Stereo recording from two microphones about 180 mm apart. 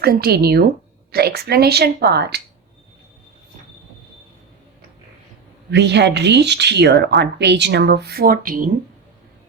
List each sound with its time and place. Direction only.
0.0 s speech: 60° right (ahead or behind)
5.7 s a woman's voice: 75° right (ahead or behind); by 8.7 s 50° right (ahead or behind)